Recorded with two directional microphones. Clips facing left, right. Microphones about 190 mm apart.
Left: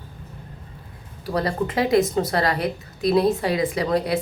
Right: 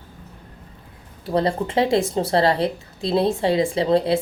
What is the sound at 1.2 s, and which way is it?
A woman's voice, 25° right (ahead or behind).